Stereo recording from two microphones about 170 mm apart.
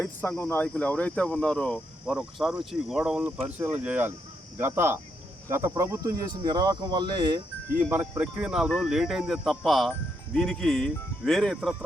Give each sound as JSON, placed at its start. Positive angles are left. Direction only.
{"t": 0.0, "sound": "cricket", "side_deg": 10}
{"t": 2.1, "sound": "speech", "side_deg": 0}
{"t": 4.5, "sound": "cricket", "side_deg": -15}
{"t": 5.5, "sound": "speech", "side_deg": -15}
{"t": 7.8, "sound": "speech", "side_deg": -10}